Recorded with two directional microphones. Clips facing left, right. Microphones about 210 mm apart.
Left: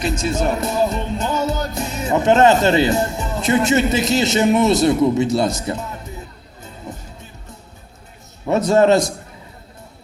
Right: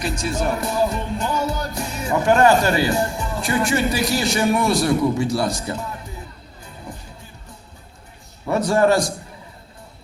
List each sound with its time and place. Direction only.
0.0 s speech: 20° left (ahead or behind)
6.9 s music: 20° left (ahead or behind)
8.4 s a man's voice: 20° left (ahead or behind)